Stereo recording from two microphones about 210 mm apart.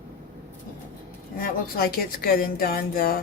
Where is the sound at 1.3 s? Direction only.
45° left (ahead or behind).